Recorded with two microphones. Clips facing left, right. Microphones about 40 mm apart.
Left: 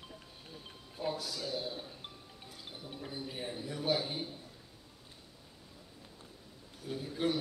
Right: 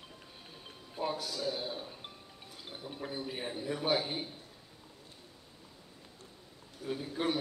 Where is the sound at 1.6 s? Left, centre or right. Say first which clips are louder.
Right 2 dB; centre.